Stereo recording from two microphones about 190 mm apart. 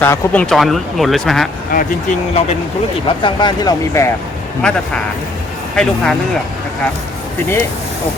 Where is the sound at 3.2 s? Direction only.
25° left (ahead or behind).